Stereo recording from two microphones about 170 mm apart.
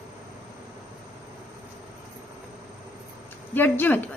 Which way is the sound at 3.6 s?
10° left (ahead or behind).